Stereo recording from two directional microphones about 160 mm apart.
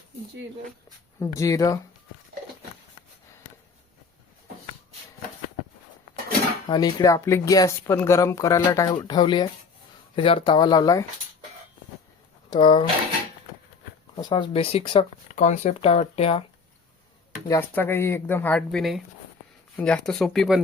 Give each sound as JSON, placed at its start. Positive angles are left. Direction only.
{"t": 1.2, "sound": "speech", "side_deg": 20}
{"t": 6.7, "sound": "speech", "side_deg": 25}
{"t": 12.5, "sound": "speech", "side_deg": 30}
{"t": 14.2, "sound": "speech", "side_deg": 30}
{"t": 17.5, "sound": "speech", "side_deg": 15}